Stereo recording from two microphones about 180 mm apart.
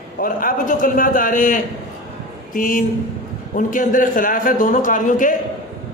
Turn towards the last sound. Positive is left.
turn(degrees=45)  # may be behind; listen again after turning